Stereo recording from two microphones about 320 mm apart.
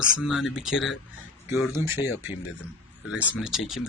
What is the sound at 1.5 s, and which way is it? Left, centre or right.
Speech, centre.